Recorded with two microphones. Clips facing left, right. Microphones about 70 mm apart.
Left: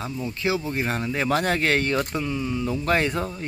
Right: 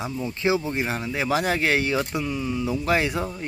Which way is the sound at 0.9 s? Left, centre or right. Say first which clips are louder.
Left 2 dB; centre.